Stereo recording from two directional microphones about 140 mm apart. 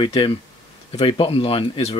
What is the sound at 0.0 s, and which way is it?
Speech, 40° left (ahead or behind).